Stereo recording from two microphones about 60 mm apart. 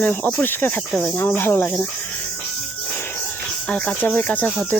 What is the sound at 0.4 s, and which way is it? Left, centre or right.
Speech, left.